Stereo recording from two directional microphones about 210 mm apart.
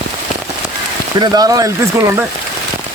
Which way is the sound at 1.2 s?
20° right (ahead or behind).